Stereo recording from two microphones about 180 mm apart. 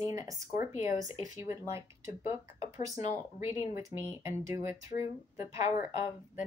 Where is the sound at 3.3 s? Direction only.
15° right (ahead or behind).